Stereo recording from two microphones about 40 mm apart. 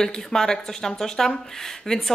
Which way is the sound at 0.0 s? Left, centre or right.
Centre.